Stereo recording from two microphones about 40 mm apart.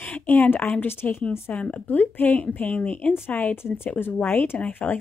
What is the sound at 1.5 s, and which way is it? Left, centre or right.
Speech, left.